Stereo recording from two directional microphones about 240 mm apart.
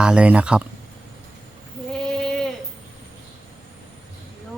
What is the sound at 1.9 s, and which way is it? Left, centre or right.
Sheep, centre.